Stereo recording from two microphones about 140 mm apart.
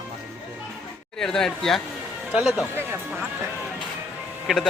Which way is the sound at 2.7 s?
15° right (ahead or behind).